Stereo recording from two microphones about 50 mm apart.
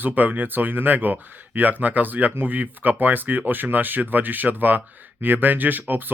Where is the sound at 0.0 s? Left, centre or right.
Right.